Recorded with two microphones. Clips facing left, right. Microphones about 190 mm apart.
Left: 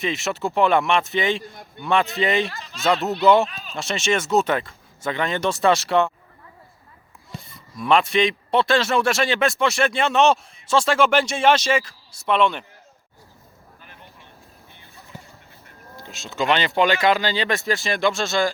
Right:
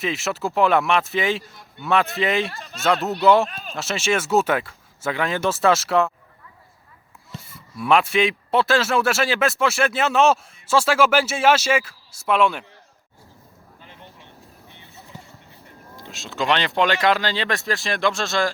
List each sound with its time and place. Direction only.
0.0 s a man's voice: centre (ahead or behind)
3.5 s speech: 50° right (ahead or behind)
3.8 s a man's voice: centre (ahead or behind)
7.4 s a man's voice: 5° right (ahead or behind)
13.8 s vehicle: 20° right (ahead or behind)
14.7 s a sound: 20° right (ahead or behind)
16.0 s a man's voice: centre (ahead or behind)